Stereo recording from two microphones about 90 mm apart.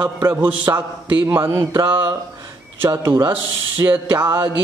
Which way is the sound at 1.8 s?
50° right (ahead or behind).